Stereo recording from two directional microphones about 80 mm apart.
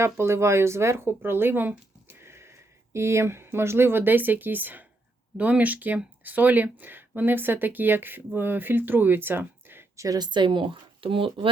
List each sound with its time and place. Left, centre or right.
0.0 s speech: right
10.2 s speech: right